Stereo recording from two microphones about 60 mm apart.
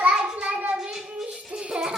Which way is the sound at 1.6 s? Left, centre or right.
Centre.